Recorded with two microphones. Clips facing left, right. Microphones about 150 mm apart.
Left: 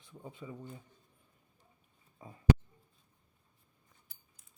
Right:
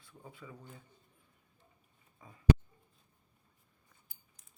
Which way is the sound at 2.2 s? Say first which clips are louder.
Left 5 dB; 30° left (ahead or behind).